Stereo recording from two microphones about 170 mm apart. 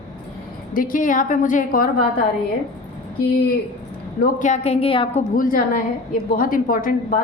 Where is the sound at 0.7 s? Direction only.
50° left (ahead or behind).